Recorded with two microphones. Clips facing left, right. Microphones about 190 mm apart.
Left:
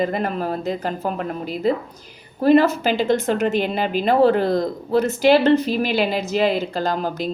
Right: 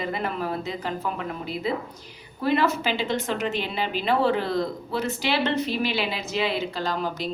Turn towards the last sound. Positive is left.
turn(degrees=45)  # may be behind; listen again after turning